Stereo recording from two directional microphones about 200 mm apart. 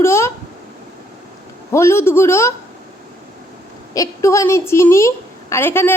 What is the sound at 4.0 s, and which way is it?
A man's voice, 15° left (ahead or behind).